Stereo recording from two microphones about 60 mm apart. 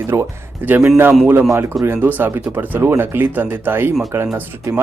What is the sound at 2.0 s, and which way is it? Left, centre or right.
Speech, right.